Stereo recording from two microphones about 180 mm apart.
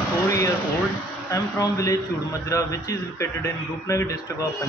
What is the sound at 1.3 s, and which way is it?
A man's voice, 15° left (ahead or behind).